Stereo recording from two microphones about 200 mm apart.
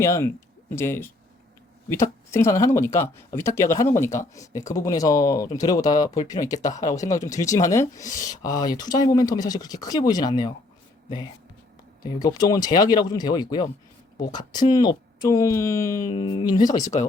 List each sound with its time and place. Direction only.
0.0 s speech: 15° left (ahead or behind)
12.2 s speech: 20° left (ahead or behind)
16.8 s speech: 35° left (ahead or behind)